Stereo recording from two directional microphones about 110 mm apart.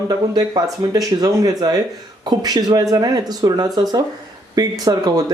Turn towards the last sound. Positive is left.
turn(degrees=-35)  # may be behind; listen again after turning